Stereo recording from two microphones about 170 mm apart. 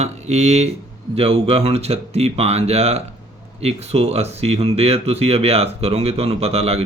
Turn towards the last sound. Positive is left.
turn(degrees=-35)  # may be behind; listen again after turning